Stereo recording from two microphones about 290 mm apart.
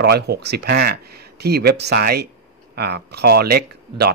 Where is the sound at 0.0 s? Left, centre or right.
Right.